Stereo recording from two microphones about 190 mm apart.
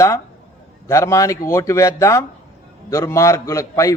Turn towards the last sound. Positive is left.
turn(degrees=15)  # may be behind; listen again after turning